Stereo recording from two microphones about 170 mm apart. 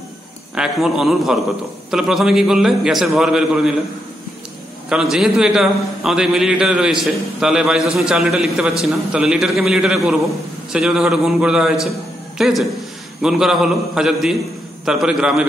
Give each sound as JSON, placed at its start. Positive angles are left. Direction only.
{"t": 0.6, "sound": "a man's voice", "side_deg": -5}
{"t": 4.8, "sound": "a man's voice", "side_deg": -5}